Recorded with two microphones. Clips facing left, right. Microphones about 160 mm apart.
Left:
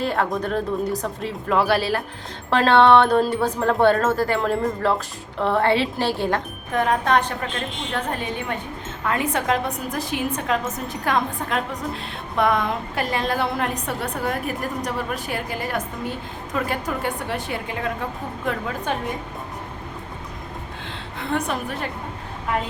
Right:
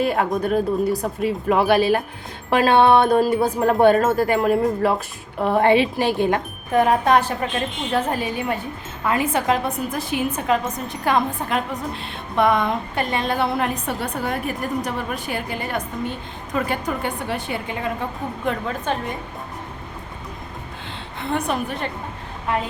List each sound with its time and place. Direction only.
0.0 s a woman's voice: 15° right (ahead or behind)
18.9 s speech: 10° left (ahead or behind)
21.2 s a woman's voice: centre (ahead or behind)